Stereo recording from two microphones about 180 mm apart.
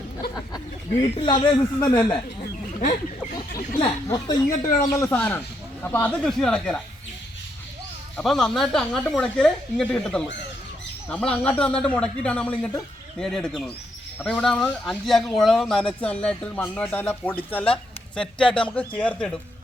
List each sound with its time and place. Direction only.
1.0 s a woman's voice: 30° left (ahead or behind)
3.8 s a woman's voice: 20° left (ahead or behind); by 6.8 s 5° left (ahead or behind)
8.1 s speech: centre (ahead or behind)